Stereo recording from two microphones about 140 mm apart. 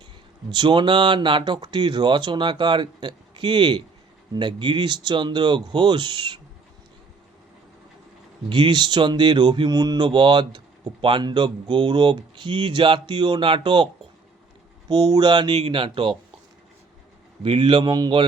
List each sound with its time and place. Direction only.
0.5 s speech: 35° right (ahead or behind)
8.4 s speech: 35° right (ahead or behind)
14.8 s speech: 30° right (ahead or behind)
15.5 s speech: 45° right (ahead or behind)
17.4 s speech: 40° right (ahead or behind)